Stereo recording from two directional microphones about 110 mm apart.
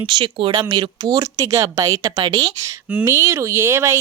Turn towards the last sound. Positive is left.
turn(degrees=-25)  # may be behind; listen again after turning